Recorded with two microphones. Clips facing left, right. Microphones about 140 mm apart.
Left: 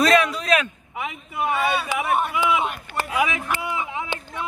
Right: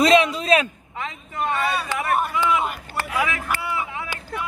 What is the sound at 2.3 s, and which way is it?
Speech, 15° left (ahead or behind).